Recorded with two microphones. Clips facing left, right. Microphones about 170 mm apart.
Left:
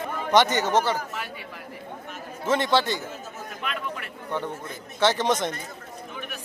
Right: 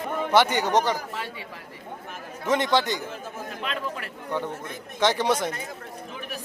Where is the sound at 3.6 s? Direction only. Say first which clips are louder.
Even; 30° right (ahead or behind).